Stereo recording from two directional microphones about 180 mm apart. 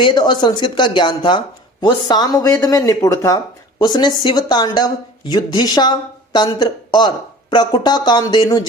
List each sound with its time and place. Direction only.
0.0 s speech: 25° left (ahead or behind)